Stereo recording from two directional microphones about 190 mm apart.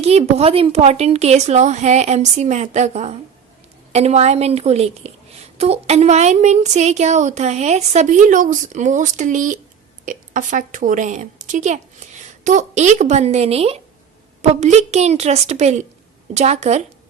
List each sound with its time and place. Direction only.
0.0 s a woman's voice: 35° right (ahead or behind)